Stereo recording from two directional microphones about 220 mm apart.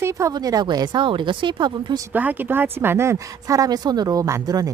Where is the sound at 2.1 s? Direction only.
5° right (ahead or behind).